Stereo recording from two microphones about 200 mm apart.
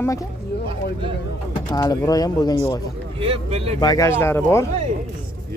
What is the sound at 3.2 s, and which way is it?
Speech, 30° right (ahead or behind).